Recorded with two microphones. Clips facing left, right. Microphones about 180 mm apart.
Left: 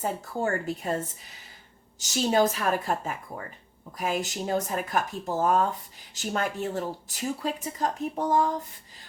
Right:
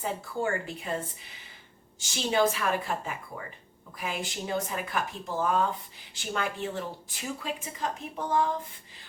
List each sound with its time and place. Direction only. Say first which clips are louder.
0.0 s a woman's voice: left 2 dB; 40° left (ahead or behind)